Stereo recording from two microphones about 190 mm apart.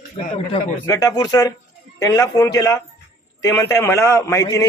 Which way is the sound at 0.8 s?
20° left (ahead or behind).